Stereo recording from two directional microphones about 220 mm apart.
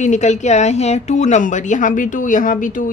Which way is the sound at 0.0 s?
35° left (ahead or behind).